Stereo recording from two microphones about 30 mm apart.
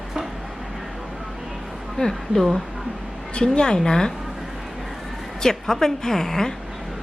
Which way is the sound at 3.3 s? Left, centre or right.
Left.